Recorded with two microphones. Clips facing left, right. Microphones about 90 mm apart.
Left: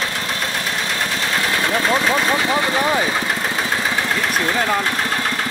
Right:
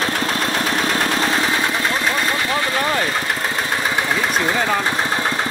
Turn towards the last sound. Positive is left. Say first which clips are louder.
# even
turn(degrees=-5)  # may be behind; listen again after turning